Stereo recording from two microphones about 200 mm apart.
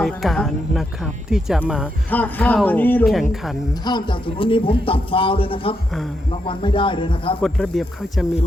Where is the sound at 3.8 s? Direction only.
25° left (ahead or behind).